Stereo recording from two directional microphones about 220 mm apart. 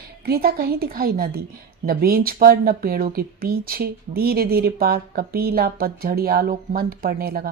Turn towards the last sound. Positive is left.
turn(degrees=-40)  # may be behind; listen again after turning